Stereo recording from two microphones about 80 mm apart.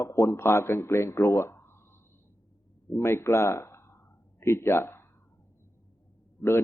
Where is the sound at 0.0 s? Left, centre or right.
Left.